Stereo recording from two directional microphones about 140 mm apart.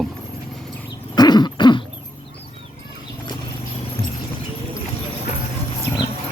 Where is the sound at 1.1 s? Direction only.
30° left (ahead or behind).